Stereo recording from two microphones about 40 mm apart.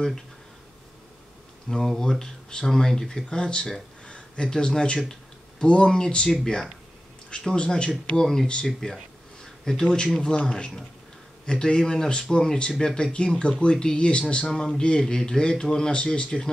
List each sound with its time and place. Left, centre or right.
1.7 s speech: centre
4.0 s a sound: left
4.5 s speech: centre
7.5 s speech: left
8.2 s speech: centre
14.4 s speech: centre